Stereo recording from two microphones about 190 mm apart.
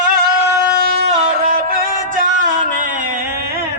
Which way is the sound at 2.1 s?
40° right (ahead or behind).